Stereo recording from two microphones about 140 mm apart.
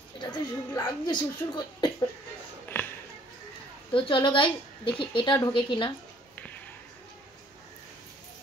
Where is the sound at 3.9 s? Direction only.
35° left (ahead or behind).